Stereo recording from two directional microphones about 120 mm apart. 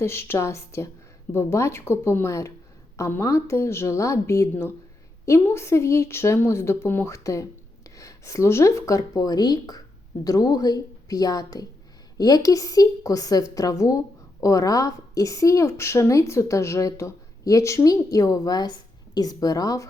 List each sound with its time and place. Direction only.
0.0 s a woman's voice: 20° left (ahead or behind)